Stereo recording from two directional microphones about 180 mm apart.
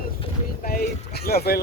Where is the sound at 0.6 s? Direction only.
60° left (ahead or behind).